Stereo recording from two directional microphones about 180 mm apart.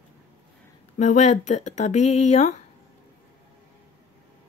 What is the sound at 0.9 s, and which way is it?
Speech, 40° left (ahead or behind).